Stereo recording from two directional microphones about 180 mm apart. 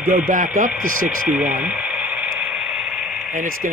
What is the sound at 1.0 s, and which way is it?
Radio, 10° right (ahead or behind).